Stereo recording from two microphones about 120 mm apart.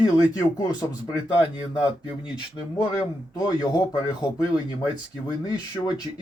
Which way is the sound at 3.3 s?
35° left (ahead or behind).